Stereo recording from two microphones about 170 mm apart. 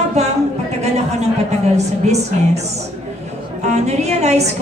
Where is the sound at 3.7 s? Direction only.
40° right (ahead or behind).